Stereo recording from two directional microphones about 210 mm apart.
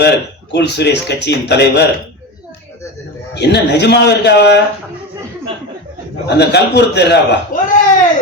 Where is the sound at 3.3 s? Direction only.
55° left (ahead or behind).